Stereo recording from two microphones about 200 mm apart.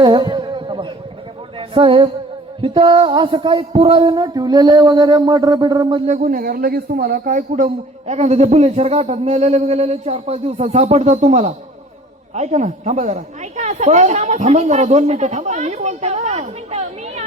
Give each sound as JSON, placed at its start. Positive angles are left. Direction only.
{"t": 0.0, "sound": "a sound", "side_deg": -20}
{"t": 1.5, "sound": "a woman's voice", "side_deg": -25}
{"t": 6.1, "sound": "a man's voice", "side_deg": -40}